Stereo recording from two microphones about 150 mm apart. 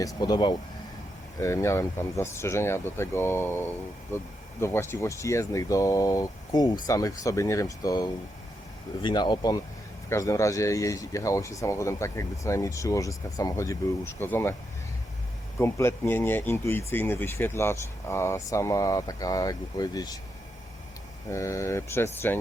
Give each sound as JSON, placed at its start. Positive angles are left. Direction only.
{"t": 0.0, "sound": "speech", "side_deg": 25}
{"t": 15.5, "sound": "speech", "side_deg": 15}
{"t": 21.2, "sound": "speech", "side_deg": 20}